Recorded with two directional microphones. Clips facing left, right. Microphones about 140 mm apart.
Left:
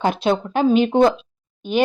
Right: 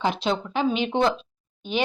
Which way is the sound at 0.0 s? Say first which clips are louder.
Left 5 dB; 50° left (ahead or behind).